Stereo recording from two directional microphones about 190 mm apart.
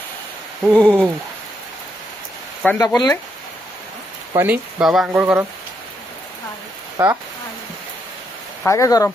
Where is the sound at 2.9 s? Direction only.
15° left (ahead or behind).